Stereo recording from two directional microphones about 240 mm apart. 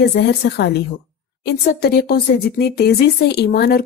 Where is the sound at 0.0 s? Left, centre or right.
Left.